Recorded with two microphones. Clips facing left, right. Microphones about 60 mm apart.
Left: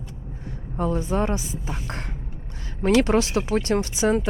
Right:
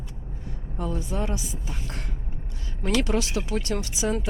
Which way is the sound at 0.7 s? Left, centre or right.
Left.